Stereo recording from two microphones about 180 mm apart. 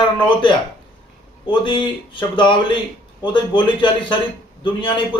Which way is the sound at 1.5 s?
25° left (ahead or behind).